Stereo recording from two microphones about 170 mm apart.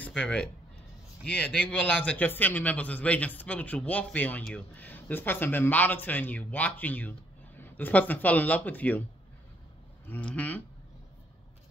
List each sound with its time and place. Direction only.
0.0 s a man's voice: 5° left (ahead or behind)
10.0 s a man's voice: 10° left (ahead or behind)